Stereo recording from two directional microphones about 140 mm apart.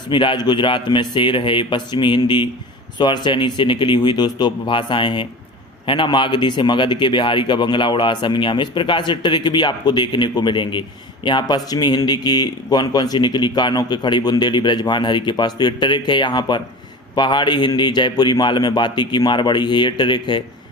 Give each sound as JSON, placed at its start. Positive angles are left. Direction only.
{"t": 0.1, "sound": "a man's voice", "side_deg": 35}